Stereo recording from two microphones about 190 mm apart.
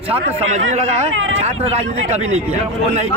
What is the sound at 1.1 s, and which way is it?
Speech, 90° right.